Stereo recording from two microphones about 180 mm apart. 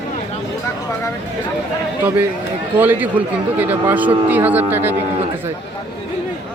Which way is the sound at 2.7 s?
10° right (ahead or behind).